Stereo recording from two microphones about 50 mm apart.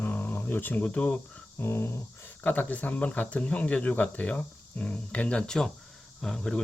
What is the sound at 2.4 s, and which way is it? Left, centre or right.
Speech, left.